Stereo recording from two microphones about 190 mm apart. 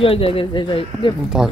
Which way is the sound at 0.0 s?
30° left (ahead or behind).